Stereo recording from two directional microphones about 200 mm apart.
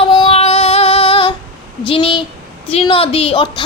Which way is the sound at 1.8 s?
25° left (ahead or behind).